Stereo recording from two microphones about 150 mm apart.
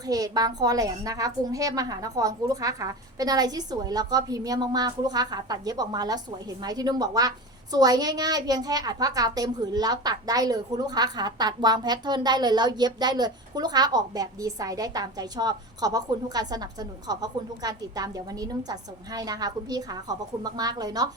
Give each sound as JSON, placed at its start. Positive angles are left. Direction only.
{"t": 0.1, "sound": "a woman's voice", "side_deg": -25}